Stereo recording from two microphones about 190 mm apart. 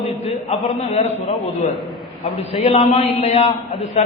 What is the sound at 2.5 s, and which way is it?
A man's voice, 35° left (ahead or behind).